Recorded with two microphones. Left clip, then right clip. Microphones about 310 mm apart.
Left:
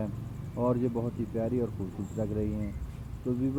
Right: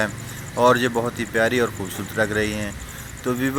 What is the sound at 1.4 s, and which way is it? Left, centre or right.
Speech, right.